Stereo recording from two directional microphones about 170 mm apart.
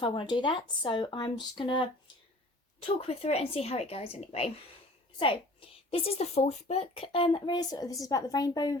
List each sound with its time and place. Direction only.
0.0 s a woman's voice: 30° left (ahead or behind)